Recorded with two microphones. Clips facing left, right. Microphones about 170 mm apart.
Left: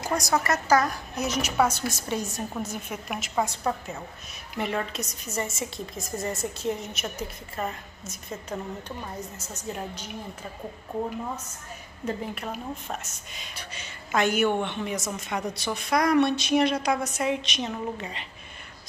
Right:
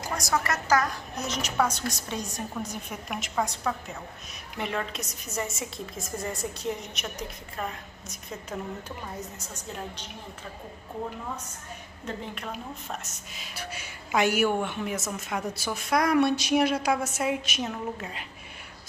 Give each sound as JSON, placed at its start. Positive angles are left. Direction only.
{"t": 0.1, "sound": "a sound", "side_deg": 40}
{"t": 0.5, "sound": "a woman's voice", "side_deg": 10}
{"t": 12.0, "sound": "a woman's voice", "side_deg": 10}